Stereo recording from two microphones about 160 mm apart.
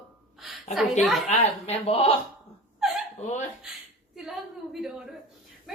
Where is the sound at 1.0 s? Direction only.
Centre (ahead or behind).